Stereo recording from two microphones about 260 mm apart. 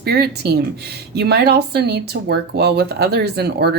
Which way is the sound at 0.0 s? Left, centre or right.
Right.